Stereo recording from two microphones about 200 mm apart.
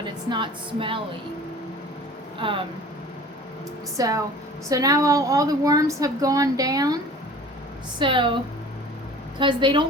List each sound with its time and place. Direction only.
0.0 s a woman's voice: 25° right (ahead or behind)
2.4 s a woman's voice: 25° right (ahead or behind)
3.9 s a woman's voice: 15° right (ahead or behind)
7.9 s a woman's voice: 25° right (ahead or behind)
9.4 s a woman's voice: 25° right (ahead or behind)